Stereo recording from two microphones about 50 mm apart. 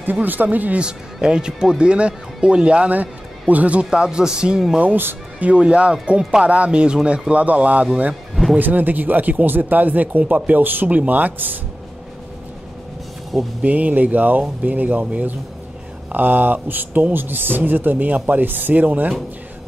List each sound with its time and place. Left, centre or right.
0.0 s speech: right
0.7 s speech: centre
3.9 s speech: centre
8.5 s speech: right
13.6 s speech: right